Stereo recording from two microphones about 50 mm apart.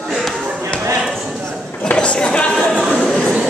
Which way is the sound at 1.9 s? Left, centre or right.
Left.